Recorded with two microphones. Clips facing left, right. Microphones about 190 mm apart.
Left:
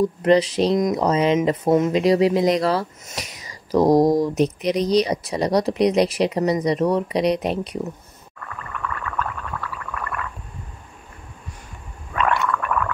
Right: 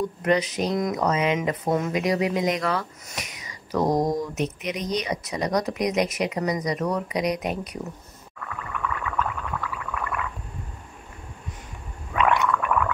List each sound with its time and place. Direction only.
0.2 s speech: 30° left (ahead or behind)
8.4 s a sound: 5° right (ahead or behind)
12.1 s gargling: 15° right (ahead or behind)